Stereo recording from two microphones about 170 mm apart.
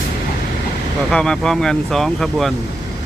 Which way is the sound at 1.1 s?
5° left (ahead or behind).